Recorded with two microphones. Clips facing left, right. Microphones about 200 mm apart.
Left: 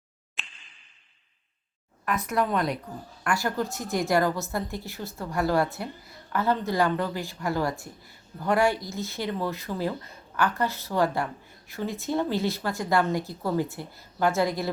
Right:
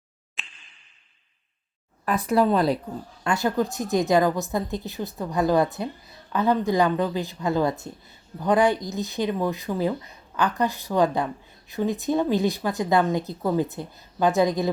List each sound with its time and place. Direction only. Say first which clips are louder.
0.4 s a sound: even; centre (ahead or behind)
2.0 s speech: right 6 dB; 30° right (ahead or behind)
3.2 s a woman's voice: right 4 dB; 20° right (ahead or behind)